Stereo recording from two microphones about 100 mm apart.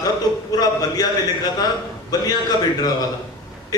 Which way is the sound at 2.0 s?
40° left (ahead or behind).